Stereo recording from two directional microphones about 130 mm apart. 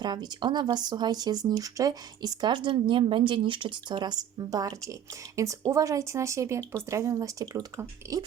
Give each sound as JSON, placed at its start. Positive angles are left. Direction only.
{"t": 0.0, "sound": "speech", "side_deg": -35}